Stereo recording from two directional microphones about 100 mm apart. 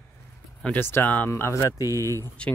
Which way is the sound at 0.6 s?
20° left (ahead or behind).